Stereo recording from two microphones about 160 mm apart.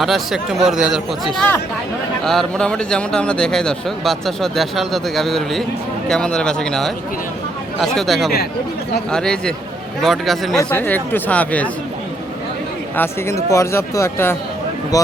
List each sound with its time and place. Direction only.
0.0 s a man's voice: centre (ahead or behind)
10.7 s speech: 10° left (ahead or behind)
13.0 s speech: 20° left (ahead or behind)